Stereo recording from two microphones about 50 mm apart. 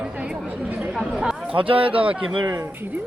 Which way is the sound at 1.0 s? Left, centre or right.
Centre.